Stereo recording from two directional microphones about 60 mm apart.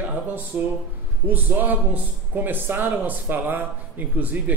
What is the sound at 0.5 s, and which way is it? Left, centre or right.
Speech, right.